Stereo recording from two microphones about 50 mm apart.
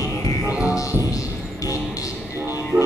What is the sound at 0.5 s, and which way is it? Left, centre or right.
Music, right.